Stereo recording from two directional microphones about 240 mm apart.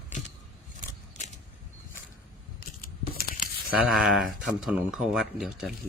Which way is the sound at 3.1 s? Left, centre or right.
Left.